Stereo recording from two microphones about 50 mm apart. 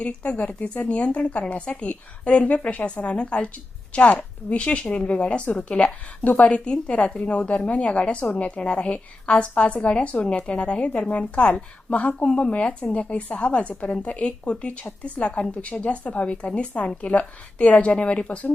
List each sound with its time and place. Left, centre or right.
0.0 s speech: left